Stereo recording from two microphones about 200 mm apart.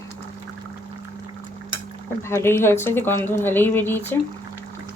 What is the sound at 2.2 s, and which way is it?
A woman's voice, 15° left (ahead or behind).